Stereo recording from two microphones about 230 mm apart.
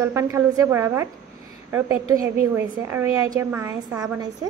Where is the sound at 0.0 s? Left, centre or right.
Centre.